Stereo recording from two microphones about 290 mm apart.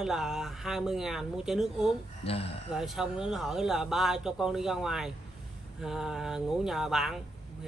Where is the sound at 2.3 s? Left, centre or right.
Centre.